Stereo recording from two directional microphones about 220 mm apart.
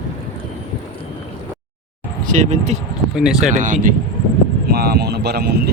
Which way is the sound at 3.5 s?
35° right (ahead or behind).